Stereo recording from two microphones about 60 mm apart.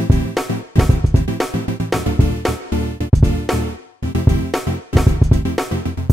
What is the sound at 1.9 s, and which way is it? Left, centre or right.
Music, centre.